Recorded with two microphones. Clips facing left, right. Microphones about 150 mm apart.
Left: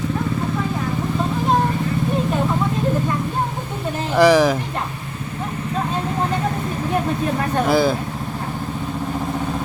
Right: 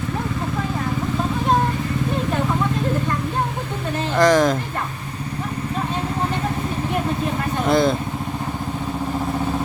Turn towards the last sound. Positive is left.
turn(degrees=5)  # may be behind; listen again after turning